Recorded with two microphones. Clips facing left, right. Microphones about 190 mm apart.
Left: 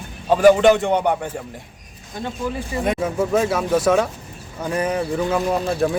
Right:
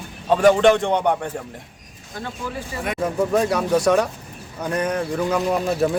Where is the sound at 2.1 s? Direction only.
20° left (ahead or behind).